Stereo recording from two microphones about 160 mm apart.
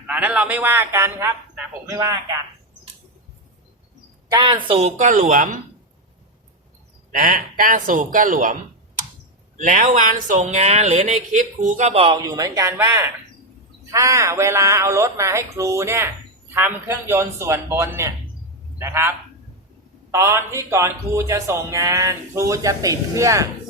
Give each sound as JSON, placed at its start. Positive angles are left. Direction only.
{"t": 0.1, "sound": "a man's voice", "side_deg": -10}
{"t": 4.3, "sound": "speech", "side_deg": -25}
{"t": 7.1, "sound": "a man's voice", "side_deg": -60}
{"t": 9.6, "sound": "speech", "side_deg": -50}
{"t": 12.2, "sound": "a man's voice", "side_deg": -20}